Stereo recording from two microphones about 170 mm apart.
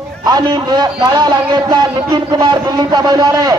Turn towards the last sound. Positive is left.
turn(degrees=-25)  # may be behind; listen again after turning